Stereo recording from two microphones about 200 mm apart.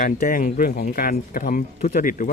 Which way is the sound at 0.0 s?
45° left (ahead or behind).